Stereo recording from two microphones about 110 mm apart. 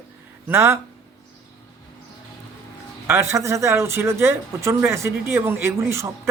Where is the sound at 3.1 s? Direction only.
25° right (ahead or behind).